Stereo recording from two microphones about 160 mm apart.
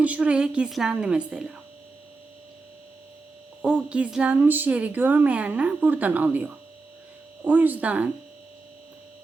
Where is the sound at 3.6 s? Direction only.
5° right (ahead or behind).